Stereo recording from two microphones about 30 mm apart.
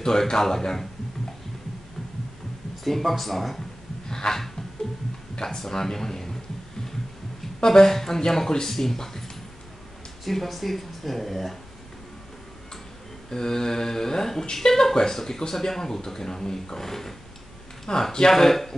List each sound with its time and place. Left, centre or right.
0.0 s speech: centre
2.8 s speech: centre
4.1 s speech: centre
5.4 s speech: centre
7.6 s speech: centre
10.2 s speech: centre
13.3 s speech: centre
17.9 s speech: left
18.3 s speech: centre